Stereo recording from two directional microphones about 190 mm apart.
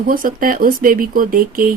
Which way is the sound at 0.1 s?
45° right (ahead or behind).